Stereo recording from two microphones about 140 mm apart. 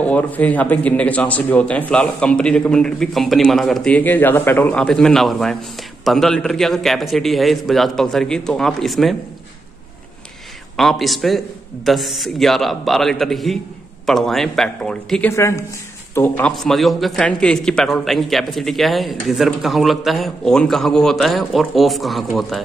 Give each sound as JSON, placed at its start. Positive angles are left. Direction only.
{"t": 0.0, "sound": "a man's voice", "side_deg": 10}
{"t": 10.8, "sound": "a man's voice", "side_deg": 0}
{"t": 15.3, "sound": "speech", "side_deg": 20}
{"t": 16.5, "sound": "a man's voice", "side_deg": 0}